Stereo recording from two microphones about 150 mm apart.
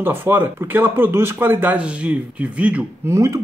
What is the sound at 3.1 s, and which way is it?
Speech, 20° right (ahead or behind).